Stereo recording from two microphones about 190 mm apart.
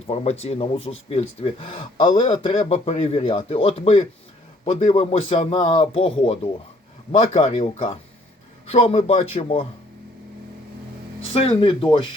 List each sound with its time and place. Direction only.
0.1 s speech: 35° left (ahead or behind)
11.3 s speech: 30° left (ahead or behind)